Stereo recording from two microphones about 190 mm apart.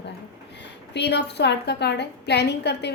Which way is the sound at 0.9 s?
60° left (ahead or behind).